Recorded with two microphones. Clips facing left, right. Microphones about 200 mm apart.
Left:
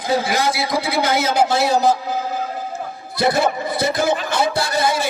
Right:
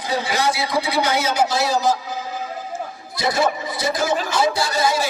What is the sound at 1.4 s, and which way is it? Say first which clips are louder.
A man's voice: left 4 dB; 60° left (ahead or behind).